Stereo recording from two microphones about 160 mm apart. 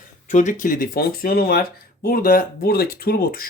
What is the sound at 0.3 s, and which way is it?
Speech, 50° left (ahead or behind).